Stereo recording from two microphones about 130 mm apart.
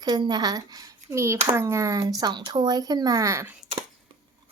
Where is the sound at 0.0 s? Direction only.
35° right (ahead or behind).